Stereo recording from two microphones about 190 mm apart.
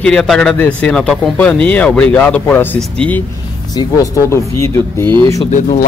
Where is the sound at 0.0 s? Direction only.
5° left (ahead or behind).